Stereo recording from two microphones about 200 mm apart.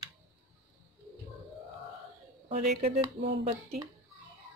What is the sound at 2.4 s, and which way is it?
Speech, 40° right (ahead or behind).